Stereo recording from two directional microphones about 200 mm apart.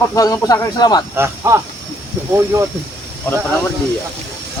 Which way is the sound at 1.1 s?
15° right (ahead or behind).